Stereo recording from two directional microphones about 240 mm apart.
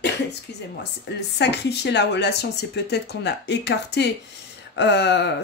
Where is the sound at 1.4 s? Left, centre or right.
Left.